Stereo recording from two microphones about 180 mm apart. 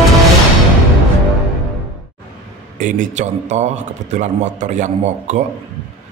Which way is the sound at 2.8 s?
45° right (ahead or behind).